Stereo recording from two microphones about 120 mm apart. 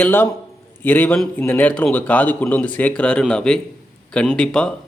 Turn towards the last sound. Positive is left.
turn(degrees=5)  # may be behind; listen again after turning